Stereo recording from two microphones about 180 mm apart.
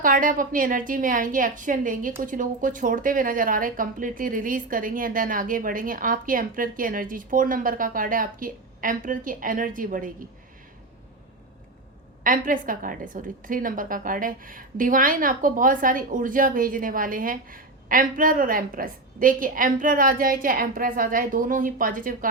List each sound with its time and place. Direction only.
0.0 s a woman's voice: 50° right (ahead or behind)
12.2 s a woman's voice: 50° right (ahead or behind)